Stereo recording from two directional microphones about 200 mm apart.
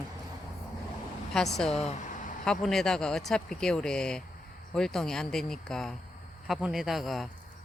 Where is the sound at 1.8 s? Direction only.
35° left (ahead or behind).